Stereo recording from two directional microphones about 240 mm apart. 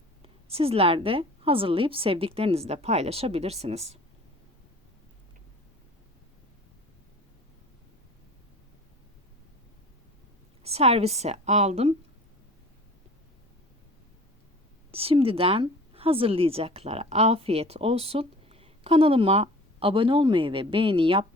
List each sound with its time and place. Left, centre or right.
0.2 s a woman's voice: right
10.6 s a woman's voice: right
14.9 s a woman's voice: right